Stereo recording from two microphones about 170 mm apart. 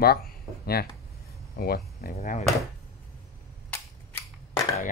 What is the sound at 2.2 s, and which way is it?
Speech, 45° left (ahead or behind).